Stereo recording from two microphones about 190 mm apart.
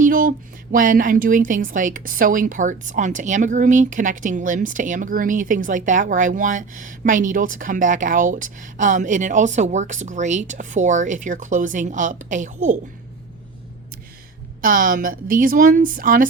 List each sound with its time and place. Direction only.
0.0 s speech: 45° right (ahead or behind)
14.6 s speech: 45° right (ahead or behind)